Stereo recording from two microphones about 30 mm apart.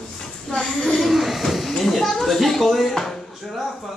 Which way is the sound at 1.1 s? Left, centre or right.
Centre.